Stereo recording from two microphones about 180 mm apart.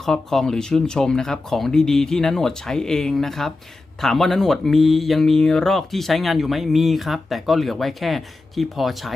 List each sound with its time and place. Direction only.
0.0 s speech: centre (ahead or behind)